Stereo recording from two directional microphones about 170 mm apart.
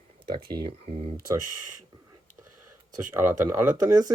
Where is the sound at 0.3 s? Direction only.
25° right (ahead or behind).